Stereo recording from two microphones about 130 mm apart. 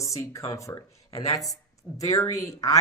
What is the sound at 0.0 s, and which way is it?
Speech, 25° left (ahead or behind).